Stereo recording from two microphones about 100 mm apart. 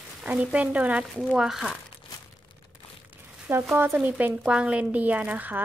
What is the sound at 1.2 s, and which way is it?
Speech, 5° right (ahead or behind).